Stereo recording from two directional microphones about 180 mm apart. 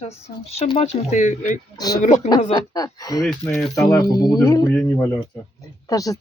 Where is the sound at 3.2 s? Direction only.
5° left (ahead or behind).